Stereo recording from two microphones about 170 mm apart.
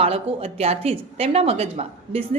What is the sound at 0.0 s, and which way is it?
A woman's voice, 35° right (ahead or behind).